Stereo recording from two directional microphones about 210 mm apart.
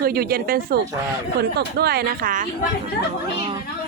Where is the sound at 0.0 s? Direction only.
45° right (ahead or behind).